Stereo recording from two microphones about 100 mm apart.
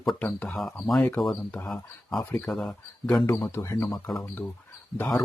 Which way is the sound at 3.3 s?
30° left (ahead or behind).